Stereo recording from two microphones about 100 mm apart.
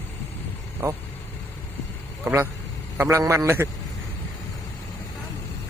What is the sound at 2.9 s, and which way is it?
Speech, 30° right (ahead or behind).